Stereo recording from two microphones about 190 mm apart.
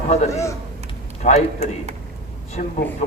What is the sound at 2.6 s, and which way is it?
Speech, 40° left (ahead or behind).